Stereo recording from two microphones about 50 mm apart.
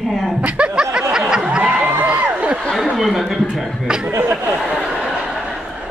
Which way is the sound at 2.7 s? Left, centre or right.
Centre.